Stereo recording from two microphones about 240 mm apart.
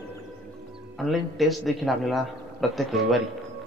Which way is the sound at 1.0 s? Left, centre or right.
Centre.